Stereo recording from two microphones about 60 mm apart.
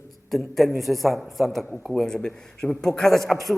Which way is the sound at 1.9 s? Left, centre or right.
Centre.